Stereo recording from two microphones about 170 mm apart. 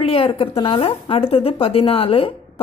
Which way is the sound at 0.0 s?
35° left (ahead or behind).